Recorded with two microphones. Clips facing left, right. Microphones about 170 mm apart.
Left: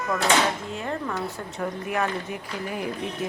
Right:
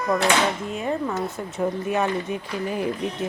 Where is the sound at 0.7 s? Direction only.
20° right (ahead or behind).